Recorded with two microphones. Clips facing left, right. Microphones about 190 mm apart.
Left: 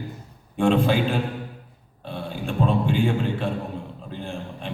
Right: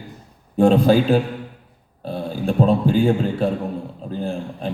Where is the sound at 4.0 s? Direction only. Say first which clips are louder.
Right 7 dB; 40° right (ahead or behind).